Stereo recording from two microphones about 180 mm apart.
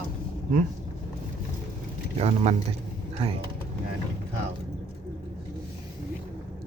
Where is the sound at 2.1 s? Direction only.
35° right (ahead or behind).